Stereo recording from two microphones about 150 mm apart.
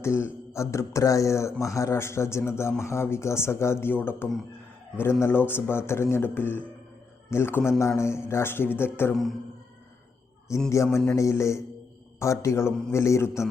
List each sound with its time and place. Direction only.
0.0 s speech: 20° left (ahead or behind)
9.1 s speech: centre (ahead or behind)
10.7 s speech: 20° left (ahead or behind)